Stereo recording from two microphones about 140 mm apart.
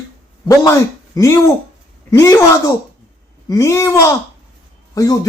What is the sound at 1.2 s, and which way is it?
Speech, 20° left (ahead or behind).